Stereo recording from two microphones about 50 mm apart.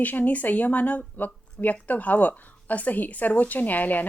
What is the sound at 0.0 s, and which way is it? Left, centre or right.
Speech, left.